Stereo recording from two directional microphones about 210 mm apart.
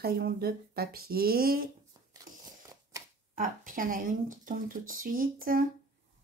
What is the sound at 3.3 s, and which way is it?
Speech, 40° right (ahead or behind).